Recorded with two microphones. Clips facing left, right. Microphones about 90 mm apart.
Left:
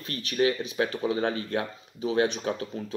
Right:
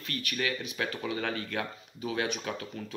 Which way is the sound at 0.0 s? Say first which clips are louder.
Left 8 dB; 25° left (ahead or behind).